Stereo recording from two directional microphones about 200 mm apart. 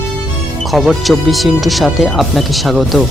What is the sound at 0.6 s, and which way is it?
Speech, centre (ahead or behind).